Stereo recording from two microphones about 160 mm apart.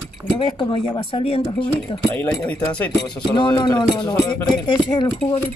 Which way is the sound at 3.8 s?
25° left (ahead or behind).